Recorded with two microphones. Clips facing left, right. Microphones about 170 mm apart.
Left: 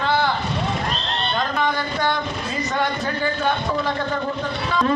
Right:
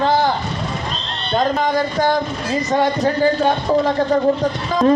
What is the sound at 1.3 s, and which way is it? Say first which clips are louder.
Speech: right 7 dB; 40° right (ahead or behind).